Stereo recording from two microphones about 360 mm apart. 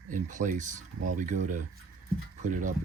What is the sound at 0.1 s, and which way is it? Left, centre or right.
Speech, right.